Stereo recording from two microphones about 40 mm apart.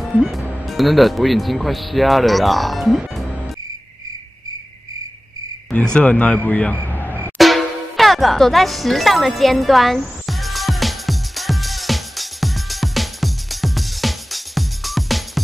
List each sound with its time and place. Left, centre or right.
0.0 s speech: centre
5.9 s a man's voice: left
6.9 s music: left
7.3 s music: centre